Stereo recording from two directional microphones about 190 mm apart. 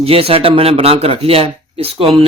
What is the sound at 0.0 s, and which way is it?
A man's voice, 30° right (ahead or behind).